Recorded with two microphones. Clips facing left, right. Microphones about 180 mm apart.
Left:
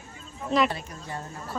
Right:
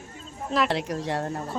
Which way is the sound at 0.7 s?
85° right.